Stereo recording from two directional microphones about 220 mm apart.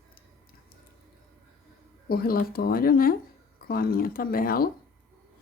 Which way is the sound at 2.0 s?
40° left (ahead or behind).